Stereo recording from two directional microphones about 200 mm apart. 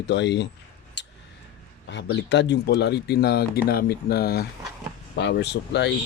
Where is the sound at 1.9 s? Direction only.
60° left (ahead or behind).